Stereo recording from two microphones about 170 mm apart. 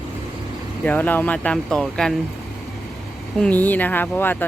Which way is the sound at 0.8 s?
10° left (ahead or behind).